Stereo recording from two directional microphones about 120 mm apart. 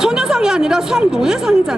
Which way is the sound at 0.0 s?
5° right (ahead or behind).